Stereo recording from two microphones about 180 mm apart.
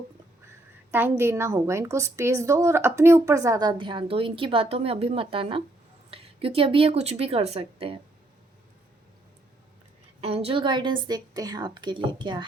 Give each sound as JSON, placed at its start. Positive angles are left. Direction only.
{"t": 0.4, "sound": "a woman's voice", "side_deg": -10}
{"t": 10.2, "sound": "a woman's voice", "side_deg": -35}